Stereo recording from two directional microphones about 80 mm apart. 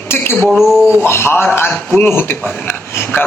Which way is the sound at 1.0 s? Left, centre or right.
Left.